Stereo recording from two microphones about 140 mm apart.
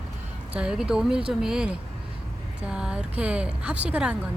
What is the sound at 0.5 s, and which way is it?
Speech, 5° right (ahead or behind).